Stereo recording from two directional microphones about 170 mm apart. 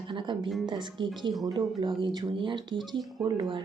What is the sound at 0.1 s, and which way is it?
A woman's voice, 30° right (ahead or behind).